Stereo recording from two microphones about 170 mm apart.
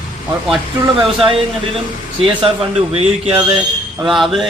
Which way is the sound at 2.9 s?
35° right (ahead or behind).